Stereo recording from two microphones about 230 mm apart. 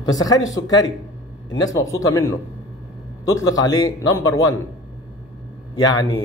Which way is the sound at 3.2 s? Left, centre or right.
Centre.